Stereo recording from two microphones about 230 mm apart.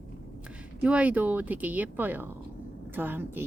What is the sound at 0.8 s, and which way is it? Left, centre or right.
Speech, centre.